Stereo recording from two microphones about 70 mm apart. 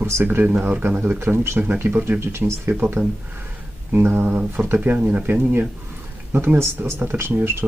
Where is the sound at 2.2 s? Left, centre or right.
Right.